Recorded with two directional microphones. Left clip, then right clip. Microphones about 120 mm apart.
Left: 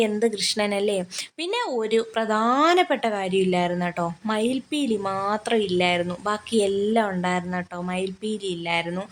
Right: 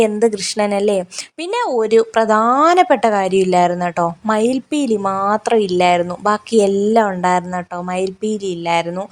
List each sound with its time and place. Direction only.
0.0 s speech: 35° right (ahead or behind)
5.0 s speech: 5° right (ahead or behind)
5.3 s speech: 35° right (ahead or behind)